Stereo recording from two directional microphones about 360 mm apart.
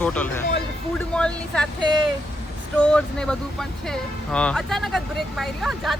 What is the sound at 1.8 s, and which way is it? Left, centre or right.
Speech, centre.